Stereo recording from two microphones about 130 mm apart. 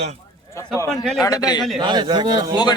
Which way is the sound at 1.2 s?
30° left (ahead or behind).